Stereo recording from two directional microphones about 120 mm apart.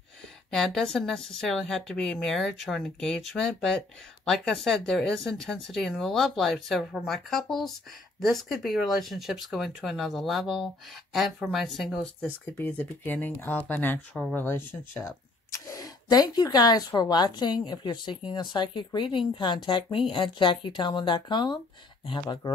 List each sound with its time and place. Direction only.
0.5 s speech: 5° left (ahead or behind)
12.5 s speech: 15° left (ahead or behind)
15.6 s a woman's voice: 30° left (ahead or behind)